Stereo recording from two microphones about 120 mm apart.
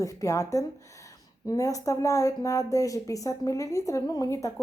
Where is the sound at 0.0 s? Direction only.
25° left (ahead or behind).